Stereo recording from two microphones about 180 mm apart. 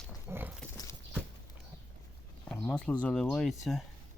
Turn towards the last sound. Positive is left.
turn(degrees=0)  # may be behind; listen again after turning